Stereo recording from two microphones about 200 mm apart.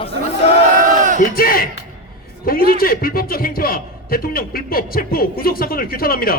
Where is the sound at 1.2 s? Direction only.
45° left (ahead or behind).